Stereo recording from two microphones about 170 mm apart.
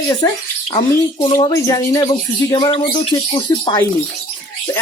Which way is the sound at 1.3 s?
20° left (ahead or behind).